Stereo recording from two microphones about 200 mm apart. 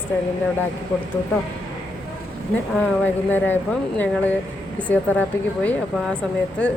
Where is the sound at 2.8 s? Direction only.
10° left (ahead or behind).